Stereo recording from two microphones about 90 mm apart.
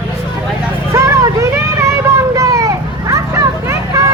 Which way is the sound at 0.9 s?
35° right (ahead or behind).